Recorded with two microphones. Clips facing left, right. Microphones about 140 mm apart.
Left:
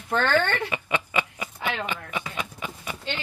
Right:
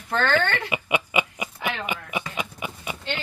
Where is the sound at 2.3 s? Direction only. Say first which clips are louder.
Right 2 dB; 10° right (ahead or behind).